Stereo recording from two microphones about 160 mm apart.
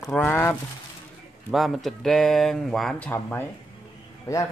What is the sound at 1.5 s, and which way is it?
Speech, centre (ahead or behind).